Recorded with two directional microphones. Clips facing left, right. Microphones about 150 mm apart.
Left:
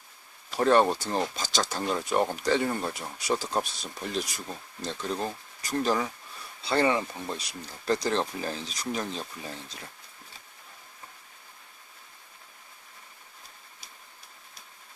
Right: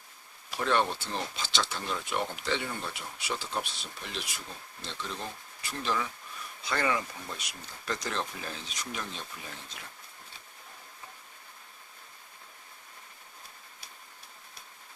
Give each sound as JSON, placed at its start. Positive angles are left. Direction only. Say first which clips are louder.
{"t": 0.5, "sound": "speech", "louder": "left 7 dB", "side_deg": 40}
{"t": 6.6, "sound": "speech", "louder": "left 5 dB", "side_deg": 30}